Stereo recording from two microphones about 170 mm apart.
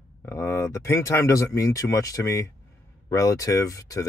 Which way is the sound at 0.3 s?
15° left (ahead or behind).